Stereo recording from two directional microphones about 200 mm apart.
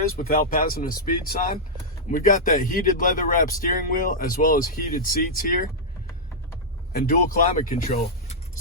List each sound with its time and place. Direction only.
0.2 s speech: 45° left (ahead or behind)
6.9 s speech: 45° left (ahead or behind)